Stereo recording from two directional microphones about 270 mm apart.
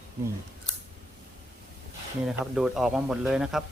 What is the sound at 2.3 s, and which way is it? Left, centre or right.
Speech, centre.